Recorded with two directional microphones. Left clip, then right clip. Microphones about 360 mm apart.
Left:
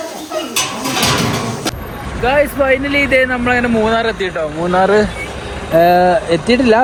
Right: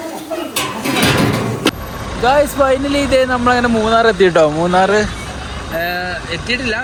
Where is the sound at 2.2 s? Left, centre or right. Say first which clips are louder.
Right 1 dB; centre.